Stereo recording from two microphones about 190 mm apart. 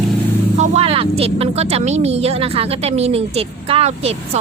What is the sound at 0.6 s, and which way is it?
A woman's voice, 30° right (ahead or behind).